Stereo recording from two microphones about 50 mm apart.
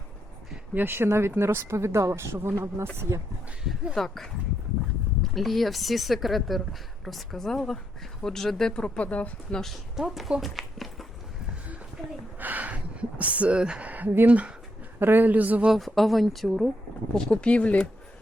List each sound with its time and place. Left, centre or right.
0.7 s speech: right
3.1 s speech: right
3.9 s speech: centre
8.8 s speech: left
9.5 s speech: centre
10.0 s speech: centre
10.4 s a sound: centre
12.4 s gasp: right
13.8 s a sound: right
14.3 s speech: right
14.9 s speech: right
15.7 s speech: centre
17.2 s speech: centre